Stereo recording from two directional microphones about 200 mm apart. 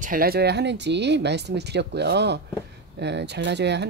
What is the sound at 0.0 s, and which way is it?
Speech, 45° right (ahead or behind).